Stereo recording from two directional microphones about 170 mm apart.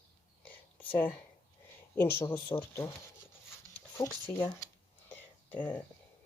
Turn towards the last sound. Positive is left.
turn(degrees=10)  # may be behind; listen again after turning